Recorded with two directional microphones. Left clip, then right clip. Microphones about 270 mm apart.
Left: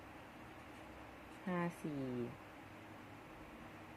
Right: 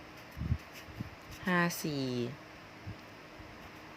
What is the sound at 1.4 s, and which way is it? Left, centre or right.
Speech, right.